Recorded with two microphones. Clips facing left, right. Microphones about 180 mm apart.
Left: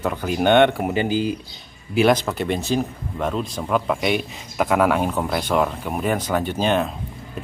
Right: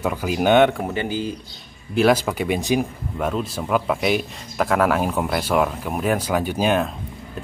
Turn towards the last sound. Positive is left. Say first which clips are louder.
# even
turn(degrees=-5)  # may be behind; listen again after turning